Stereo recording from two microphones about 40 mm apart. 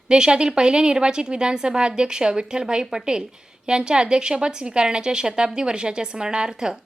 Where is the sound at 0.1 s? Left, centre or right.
Right.